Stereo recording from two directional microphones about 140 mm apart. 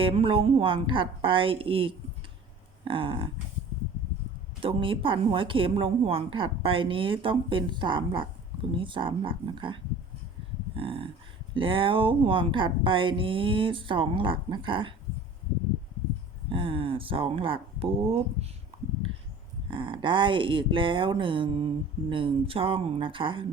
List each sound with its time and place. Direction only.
0.0 s speech: 40° right (ahead or behind)
4.6 s speech: 40° right (ahead or behind)
10.8 s a sound: 40° right (ahead or behind)
11.5 s speech: 40° right (ahead or behind)
16.5 s speech: 40° right (ahead or behind)
19.7 s speech: 35° right (ahead or behind)